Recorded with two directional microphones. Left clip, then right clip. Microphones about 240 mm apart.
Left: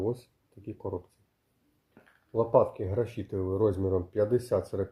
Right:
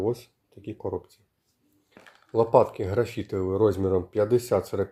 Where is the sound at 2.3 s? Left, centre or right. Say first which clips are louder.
Right 4 dB; right.